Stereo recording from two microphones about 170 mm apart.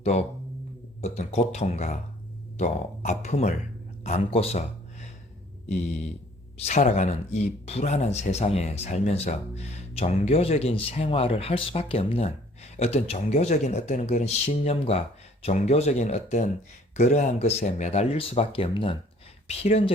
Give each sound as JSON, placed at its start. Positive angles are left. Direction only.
{"t": 0.0, "sound": "speech", "side_deg": 40}
{"t": 6.6, "sound": "speech", "side_deg": 40}